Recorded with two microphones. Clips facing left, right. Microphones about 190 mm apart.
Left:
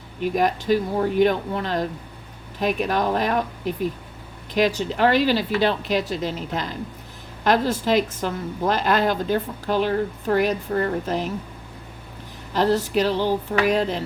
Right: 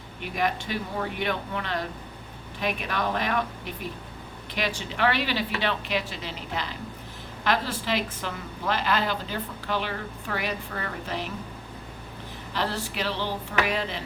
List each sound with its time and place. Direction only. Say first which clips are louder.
0.2 s speech: left 7 dB; 40° left (ahead or behind)
4.5 s a woman's voice: left 10 dB; 40° left (ahead or behind)
12.5 s a woman's voice: left 10 dB; 40° left (ahead or behind)